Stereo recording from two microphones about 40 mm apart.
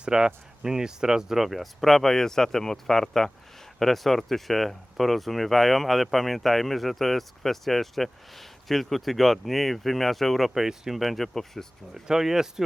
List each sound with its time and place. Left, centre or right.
0.0 s speech: centre
11.0 s speech: centre
12.0 s speech: centre